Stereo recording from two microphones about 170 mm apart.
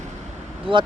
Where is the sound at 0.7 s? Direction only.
30° right (ahead or behind).